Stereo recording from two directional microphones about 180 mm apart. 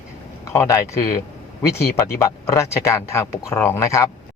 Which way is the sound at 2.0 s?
15° left (ahead or behind).